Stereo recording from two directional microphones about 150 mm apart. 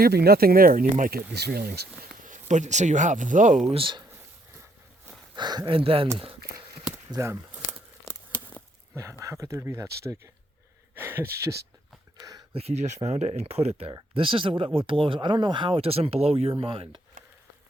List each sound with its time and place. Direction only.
0.0 s speech: 90° right
2.2 s speech: 55° right (ahead or behind)
3.8 s speech: 35° right (ahead or behind)
5.3 s speech: 30° right (ahead or behind)
7.1 s a sound: 20° right (ahead or behind)
8.0 s a sound: 10° left (ahead or behind)
9.2 s speech: 20° right (ahead or behind)
12.5 s speech: 45° right (ahead or behind)